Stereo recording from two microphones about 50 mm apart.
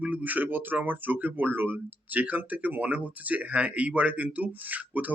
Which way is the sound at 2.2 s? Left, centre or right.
Right.